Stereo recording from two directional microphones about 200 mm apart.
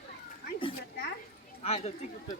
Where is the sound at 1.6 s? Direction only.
30° left (ahead or behind).